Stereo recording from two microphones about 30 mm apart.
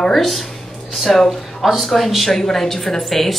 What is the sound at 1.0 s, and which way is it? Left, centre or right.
Speech, centre.